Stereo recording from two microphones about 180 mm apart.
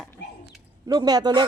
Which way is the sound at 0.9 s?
20° right (ahead or behind).